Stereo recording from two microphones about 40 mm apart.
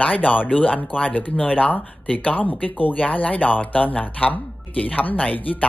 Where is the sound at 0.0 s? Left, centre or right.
Left.